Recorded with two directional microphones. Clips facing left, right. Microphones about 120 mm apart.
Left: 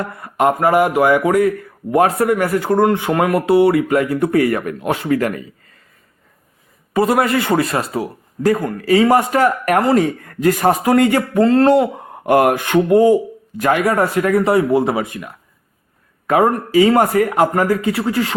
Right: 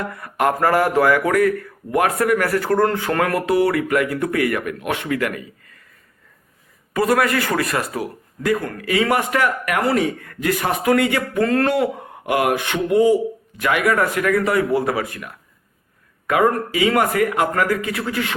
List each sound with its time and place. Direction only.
0.0 s speech: 25° left (ahead or behind)
6.9 s speech: 25° left (ahead or behind)
11.3 s speech: 30° left (ahead or behind)
12.2 s speech: 45° left (ahead or behind)
13.6 s speech: 35° left (ahead or behind)